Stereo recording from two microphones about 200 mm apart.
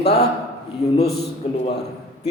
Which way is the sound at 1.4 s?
30° left (ahead or behind).